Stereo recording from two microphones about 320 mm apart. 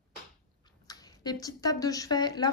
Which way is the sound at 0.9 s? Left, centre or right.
Centre.